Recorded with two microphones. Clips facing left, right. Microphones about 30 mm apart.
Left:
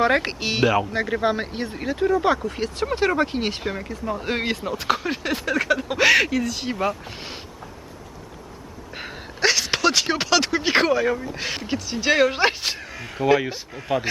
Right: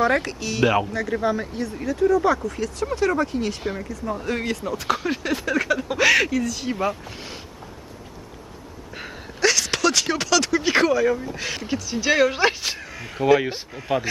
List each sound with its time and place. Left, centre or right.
0.0 s speech: left
3.6 s speech: centre
4.2 s speech: left
4.6 s speech: centre
9.0 s speech: centre